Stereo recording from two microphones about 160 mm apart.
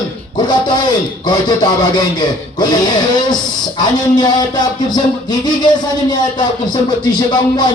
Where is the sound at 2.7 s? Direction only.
25° left (ahead or behind).